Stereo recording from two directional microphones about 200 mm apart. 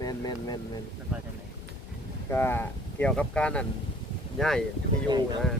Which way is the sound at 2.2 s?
10° left (ahead or behind).